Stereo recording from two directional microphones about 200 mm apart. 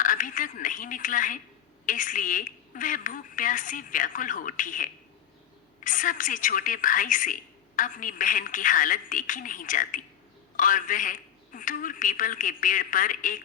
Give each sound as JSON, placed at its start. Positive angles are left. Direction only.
{"t": 0.0, "sound": "a woman's voice", "side_deg": 40}